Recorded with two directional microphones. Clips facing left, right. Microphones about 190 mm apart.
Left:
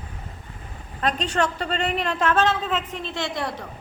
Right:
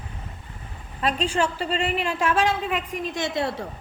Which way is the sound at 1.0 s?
5° right (ahead or behind).